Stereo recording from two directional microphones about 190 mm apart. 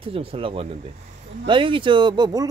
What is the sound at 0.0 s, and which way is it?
Speech, 30° right (ahead or behind).